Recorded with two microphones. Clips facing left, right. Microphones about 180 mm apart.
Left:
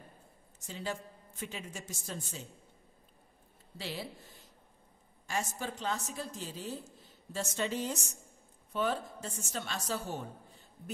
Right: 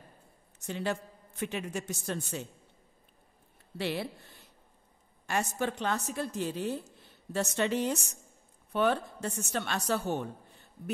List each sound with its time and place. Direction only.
0.6 s a woman's voice: 65° right (ahead or behind)
3.7 s a woman's voice: 65° right (ahead or behind)